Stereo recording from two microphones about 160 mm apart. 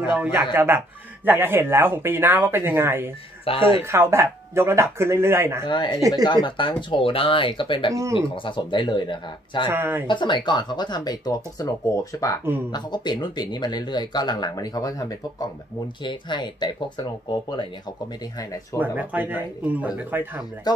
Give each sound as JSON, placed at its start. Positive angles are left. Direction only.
{"t": 0.1, "sound": "speech", "side_deg": -10}
{"t": 3.4, "sound": "speech", "side_deg": 35}
{"t": 3.9, "sound": "speech", "side_deg": -15}
{"t": 5.7, "sound": "speech", "side_deg": 30}
{"t": 9.7, "sound": "speech", "side_deg": -15}
{"t": 10.0, "sound": "speech", "side_deg": 30}
{"t": 18.8, "sound": "speech", "side_deg": -10}
{"t": 20.7, "sound": "speech", "side_deg": 25}